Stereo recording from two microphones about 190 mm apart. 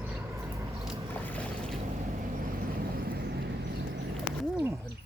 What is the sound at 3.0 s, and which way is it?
Vehicle, 55° right (ahead or behind).